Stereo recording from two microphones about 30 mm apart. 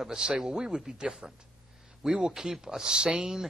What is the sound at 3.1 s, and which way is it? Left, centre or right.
Speech, centre.